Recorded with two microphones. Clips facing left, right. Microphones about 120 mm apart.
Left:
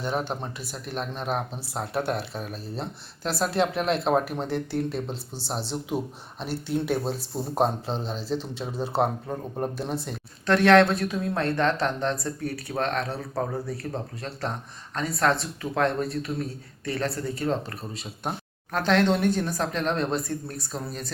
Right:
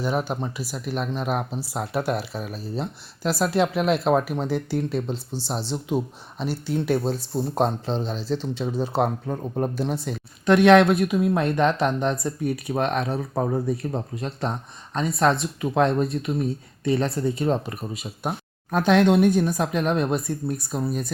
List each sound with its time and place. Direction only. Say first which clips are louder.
0.0 s speech: right 3 dB; 5° right (ahead or behind)
10.4 s speech: right 3 dB; 15° right (ahead or behind)